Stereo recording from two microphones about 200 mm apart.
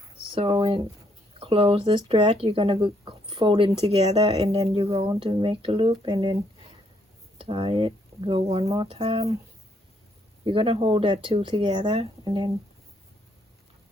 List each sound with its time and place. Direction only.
0.3 s speech: 25° right (ahead or behind)
7.3 s speech: 25° right (ahead or behind)
10.4 s speech: 25° right (ahead or behind)